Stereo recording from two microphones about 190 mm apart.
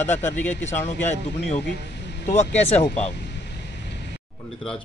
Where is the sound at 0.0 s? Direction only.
40° left (ahead or behind).